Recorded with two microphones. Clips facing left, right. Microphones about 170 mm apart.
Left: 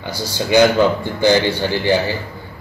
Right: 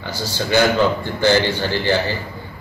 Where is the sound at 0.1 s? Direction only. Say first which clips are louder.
Left 3 dB; 15° left (ahead or behind).